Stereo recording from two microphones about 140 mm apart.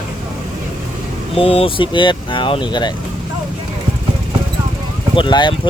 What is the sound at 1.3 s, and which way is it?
Speech, 45° left (ahead or behind).